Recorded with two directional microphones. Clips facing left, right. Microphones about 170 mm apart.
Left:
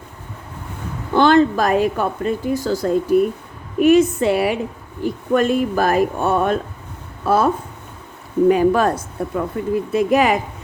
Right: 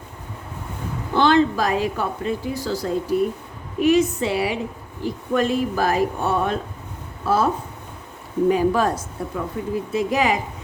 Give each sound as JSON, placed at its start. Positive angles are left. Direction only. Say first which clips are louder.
{"t": 1.1, "sound": "speech", "louder": "left 4 dB", "side_deg": 50}
{"t": 8.4, "sound": "speech", "louder": "left 4 dB", "side_deg": 60}